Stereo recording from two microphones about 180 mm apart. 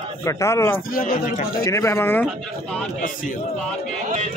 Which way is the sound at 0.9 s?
50° left (ahead or behind).